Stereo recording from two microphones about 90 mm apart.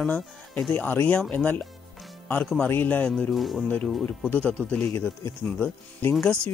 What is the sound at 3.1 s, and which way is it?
Speech, centre (ahead or behind).